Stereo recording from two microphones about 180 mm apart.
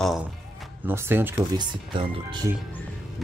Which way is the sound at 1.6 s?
25° right (ahead or behind).